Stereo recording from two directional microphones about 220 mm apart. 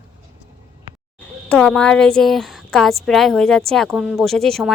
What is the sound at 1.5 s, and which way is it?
A woman's voice, 5° left (ahead or behind).